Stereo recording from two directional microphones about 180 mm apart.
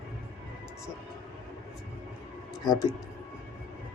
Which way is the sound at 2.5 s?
20° left (ahead or behind).